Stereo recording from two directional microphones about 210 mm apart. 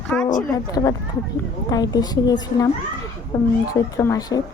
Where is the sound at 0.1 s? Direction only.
5° left (ahead or behind).